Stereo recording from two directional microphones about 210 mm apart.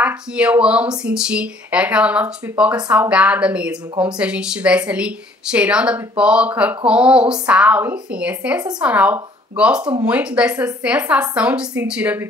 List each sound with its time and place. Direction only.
0.0 s a woman's voice: 5° right (ahead or behind)